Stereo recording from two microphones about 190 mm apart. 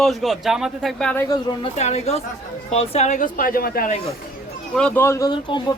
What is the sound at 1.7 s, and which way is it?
Speech, 35° left (ahead or behind).